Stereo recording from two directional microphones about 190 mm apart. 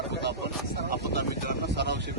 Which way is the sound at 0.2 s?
60° right (ahead or behind).